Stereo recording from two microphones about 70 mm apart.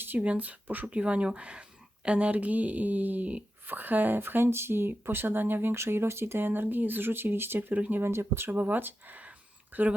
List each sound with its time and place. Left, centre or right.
0.0 s speech: right